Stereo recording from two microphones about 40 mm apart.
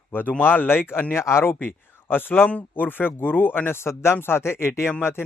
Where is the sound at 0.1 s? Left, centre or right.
Left.